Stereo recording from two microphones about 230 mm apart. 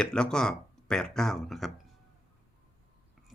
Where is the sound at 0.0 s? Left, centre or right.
Centre.